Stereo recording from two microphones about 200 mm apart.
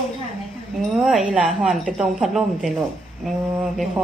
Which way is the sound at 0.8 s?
Centre (ahead or behind).